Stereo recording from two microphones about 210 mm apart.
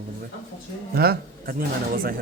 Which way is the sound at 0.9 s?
45° right (ahead or behind).